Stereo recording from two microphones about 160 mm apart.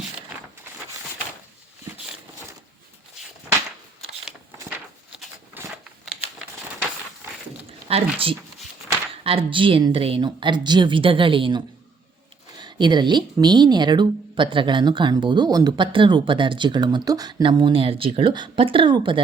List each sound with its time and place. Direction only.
7.9 s speech: 35° right (ahead or behind)